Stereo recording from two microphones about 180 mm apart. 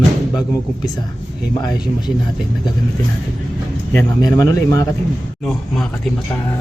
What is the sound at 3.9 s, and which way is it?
Speech, 20° left (ahead or behind).